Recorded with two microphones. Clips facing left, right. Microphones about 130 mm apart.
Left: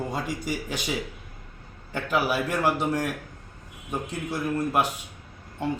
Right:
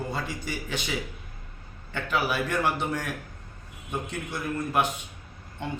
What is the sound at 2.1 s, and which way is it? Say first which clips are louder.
Speech: left 2 dB; 10° left (ahead or behind).